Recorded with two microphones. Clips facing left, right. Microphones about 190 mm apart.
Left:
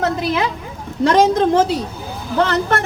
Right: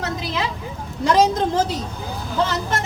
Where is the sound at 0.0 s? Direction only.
55° left (ahead or behind).